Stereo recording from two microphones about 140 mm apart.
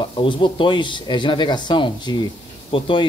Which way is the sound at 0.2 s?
35° left (ahead or behind).